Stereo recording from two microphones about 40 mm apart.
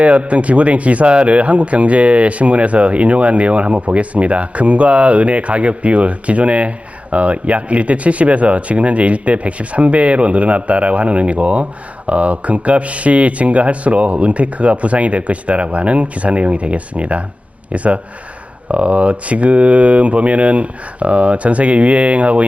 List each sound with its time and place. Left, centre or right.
0.0 s speech: right